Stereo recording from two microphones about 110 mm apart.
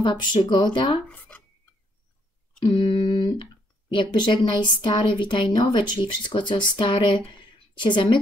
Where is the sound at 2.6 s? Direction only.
45° left (ahead or behind).